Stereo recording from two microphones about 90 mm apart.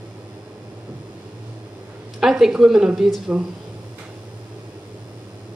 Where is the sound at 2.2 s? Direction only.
5° right (ahead or behind).